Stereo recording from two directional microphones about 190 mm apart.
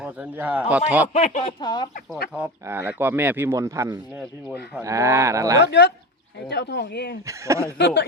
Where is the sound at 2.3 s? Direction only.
10° right (ahead or behind).